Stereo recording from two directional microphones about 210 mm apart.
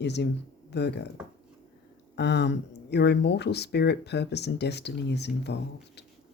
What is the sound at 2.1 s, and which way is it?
Speech, 55° left (ahead or behind).